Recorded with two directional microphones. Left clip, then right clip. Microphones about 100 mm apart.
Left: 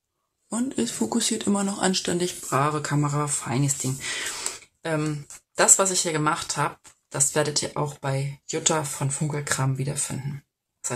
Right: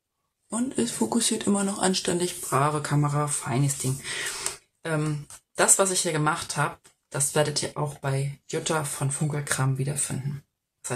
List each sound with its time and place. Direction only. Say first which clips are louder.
0.5 s speech: left 1 dB; 25° left (ahead or behind)